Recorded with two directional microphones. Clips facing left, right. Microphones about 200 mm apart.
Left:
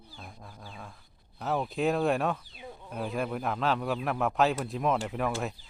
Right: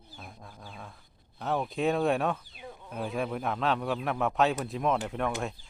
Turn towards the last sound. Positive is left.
turn(degrees=0)  # may be behind; listen again after turning